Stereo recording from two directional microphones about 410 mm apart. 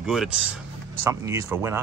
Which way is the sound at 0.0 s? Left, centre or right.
Centre.